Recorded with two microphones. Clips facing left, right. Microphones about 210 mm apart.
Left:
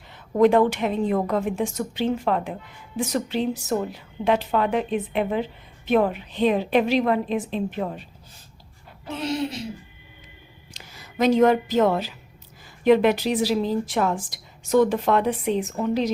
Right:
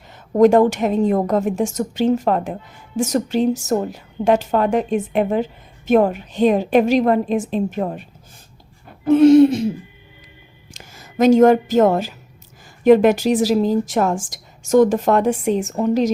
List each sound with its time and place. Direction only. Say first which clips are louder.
0.3 s a woman's voice: right 5 dB; 45° right (ahead or behind)
9.0 s a woman's voice: right 18 dB; 50° right (ahead or behind)
10.8 s a woman's voice: right 6 dB; 45° right (ahead or behind)